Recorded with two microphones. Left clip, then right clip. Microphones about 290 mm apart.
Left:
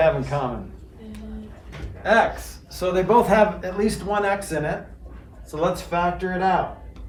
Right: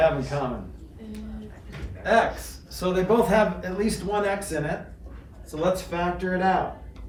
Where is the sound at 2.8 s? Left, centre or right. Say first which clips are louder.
Left 4 dB; left.